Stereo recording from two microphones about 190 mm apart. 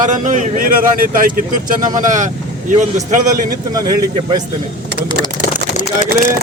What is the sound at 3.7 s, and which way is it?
Speech, 20° right (ahead or behind).